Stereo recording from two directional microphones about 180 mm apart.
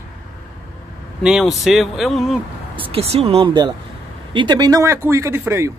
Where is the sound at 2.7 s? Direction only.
30° right (ahead or behind).